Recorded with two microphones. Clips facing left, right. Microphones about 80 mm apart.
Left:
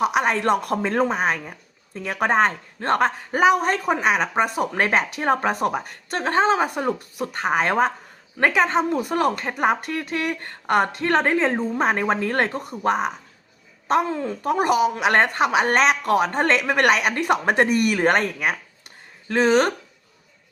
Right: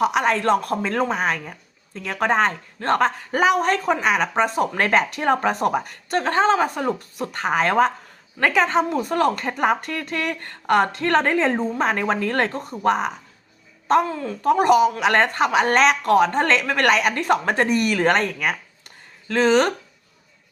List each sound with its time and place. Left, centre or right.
0.0 s a woman's voice: centre
0.3 s speech: centre
0.9 s a woman's voice: centre
14.1 s speech: left
14.4 s a woman's voice: centre
19.3 s speech: centre